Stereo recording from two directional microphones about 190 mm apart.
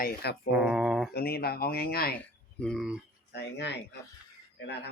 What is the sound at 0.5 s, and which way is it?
Mantra, 5° right (ahead or behind).